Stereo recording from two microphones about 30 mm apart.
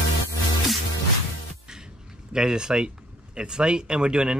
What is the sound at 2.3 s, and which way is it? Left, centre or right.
Speech, right.